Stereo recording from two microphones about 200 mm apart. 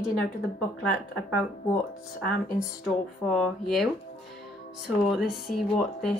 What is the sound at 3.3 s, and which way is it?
Speech, centre (ahead or behind).